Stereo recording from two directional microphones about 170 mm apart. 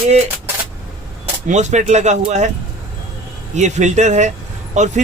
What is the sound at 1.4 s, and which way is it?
Speech, 45° right (ahead or behind).